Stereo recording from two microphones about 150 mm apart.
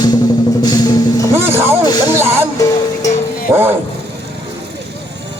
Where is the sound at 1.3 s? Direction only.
15° right (ahead or behind).